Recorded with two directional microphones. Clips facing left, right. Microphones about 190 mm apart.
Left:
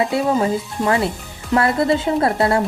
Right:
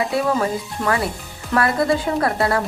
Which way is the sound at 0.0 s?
25° left (ahead or behind).